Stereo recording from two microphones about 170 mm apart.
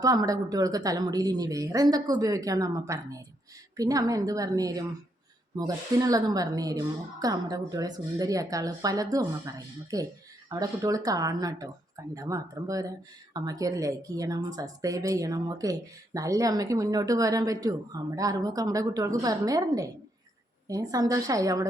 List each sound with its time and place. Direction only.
0.0 s a woman's voice: 20° right (ahead or behind)